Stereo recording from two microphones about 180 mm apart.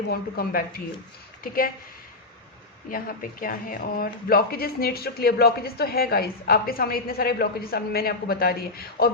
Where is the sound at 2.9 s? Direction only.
50° left (ahead or behind).